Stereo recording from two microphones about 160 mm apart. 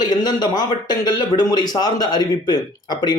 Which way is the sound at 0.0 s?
25° left (ahead or behind).